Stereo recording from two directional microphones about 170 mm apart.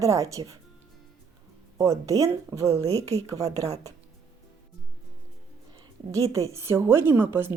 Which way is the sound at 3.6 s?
40° right (ahead or behind).